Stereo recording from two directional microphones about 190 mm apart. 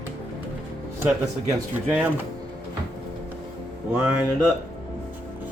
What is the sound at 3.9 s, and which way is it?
Speech, 10° right (ahead or behind).